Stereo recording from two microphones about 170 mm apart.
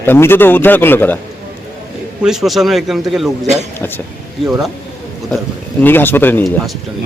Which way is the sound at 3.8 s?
10° left (ahead or behind).